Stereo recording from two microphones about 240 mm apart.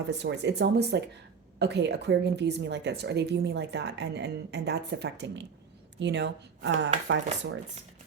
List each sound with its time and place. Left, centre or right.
0.1 s a woman's voice: right